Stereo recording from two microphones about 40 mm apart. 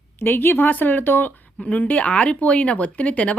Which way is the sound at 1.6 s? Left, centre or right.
Left.